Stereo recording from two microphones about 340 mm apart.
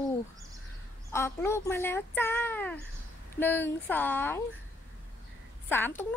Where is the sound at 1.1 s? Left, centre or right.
Centre.